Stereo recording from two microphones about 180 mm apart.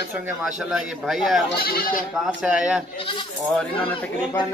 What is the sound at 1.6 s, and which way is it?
Speech, 55° left (ahead or behind).